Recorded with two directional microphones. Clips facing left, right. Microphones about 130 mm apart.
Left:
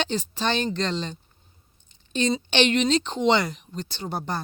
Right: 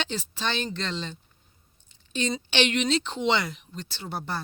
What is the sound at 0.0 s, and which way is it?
Speech, 40° left (ahead or behind).